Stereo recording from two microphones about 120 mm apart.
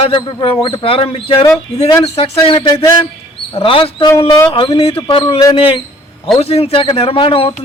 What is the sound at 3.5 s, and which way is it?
Speech, 45° left (ahead or behind).